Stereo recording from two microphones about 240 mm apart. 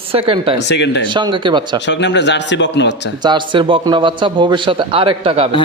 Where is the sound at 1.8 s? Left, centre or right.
Left.